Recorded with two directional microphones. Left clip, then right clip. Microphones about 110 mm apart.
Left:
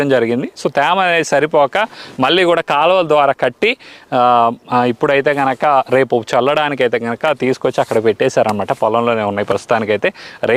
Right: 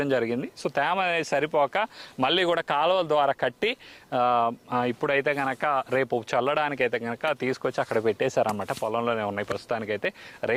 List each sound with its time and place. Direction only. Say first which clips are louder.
0.0 s speech: left 12 dB; 40° left (ahead or behind)